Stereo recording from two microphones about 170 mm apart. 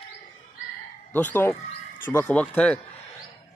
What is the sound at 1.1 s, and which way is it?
Speech, 10° left (ahead or behind).